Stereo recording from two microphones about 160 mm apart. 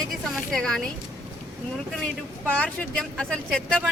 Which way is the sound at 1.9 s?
5° left (ahead or behind).